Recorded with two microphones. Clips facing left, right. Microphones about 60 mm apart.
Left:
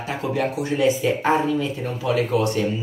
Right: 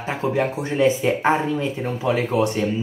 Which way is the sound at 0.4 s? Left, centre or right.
Right.